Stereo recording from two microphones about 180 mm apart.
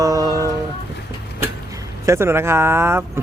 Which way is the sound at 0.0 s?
20° right (ahead or behind).